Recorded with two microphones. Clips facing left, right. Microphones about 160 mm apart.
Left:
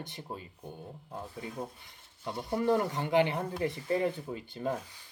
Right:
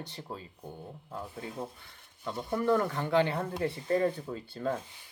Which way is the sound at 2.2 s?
20° left (ahead or behind).